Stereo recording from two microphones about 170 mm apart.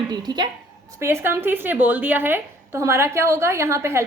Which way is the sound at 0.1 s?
25° right (ahead or behind).